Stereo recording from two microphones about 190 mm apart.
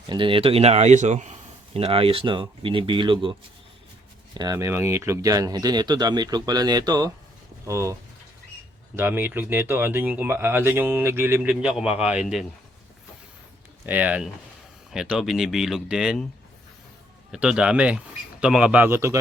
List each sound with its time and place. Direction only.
0.1 s speech: 25° right (ahead or behind)
4.4 s speech: 15° right (ahead or behind)
9.0 s speech: 10° right (ahead or behind)
13.8 s speech: 10° right (ahead or behind)
17.3 s speech: 5° right (ahead or behind)